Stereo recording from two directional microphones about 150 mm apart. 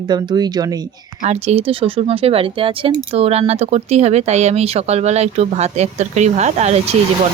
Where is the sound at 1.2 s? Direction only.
45° right (ahead or behind).